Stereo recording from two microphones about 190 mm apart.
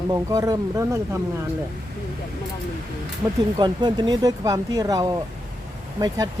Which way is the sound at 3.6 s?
25° right (ahead or behind).